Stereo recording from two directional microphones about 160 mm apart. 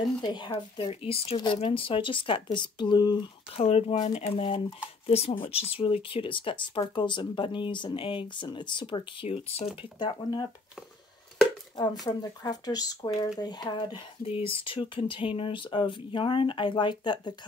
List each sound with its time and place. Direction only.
0.2 s speech: 25° left (ahead or behind)
3.6 s speech: 45° left (ahead or behind); by 10.4 s 25° left (ahead or behind)
11.7 s speech: 25° left (ahead or behind)